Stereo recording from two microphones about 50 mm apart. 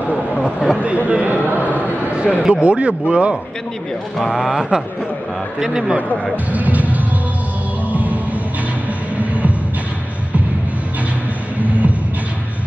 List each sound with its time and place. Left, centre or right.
0.4 s a sound: centre
1.0 s a sound: right
2.1 s speech: centre
4.3 s speech: centre
6.5 s music: right
11.6 s music: right